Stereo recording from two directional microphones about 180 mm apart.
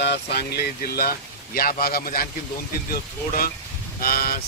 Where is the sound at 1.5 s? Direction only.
55° left (ahead or behind).